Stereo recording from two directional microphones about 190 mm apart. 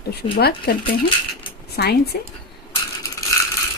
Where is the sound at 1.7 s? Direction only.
55° left (ahead or behind).